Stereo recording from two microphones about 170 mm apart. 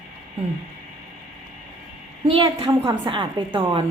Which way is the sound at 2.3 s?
35° right (ahead or behind).